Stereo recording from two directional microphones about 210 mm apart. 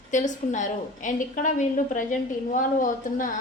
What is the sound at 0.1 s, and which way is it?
A woman's voice, 35° left (ahead or behind).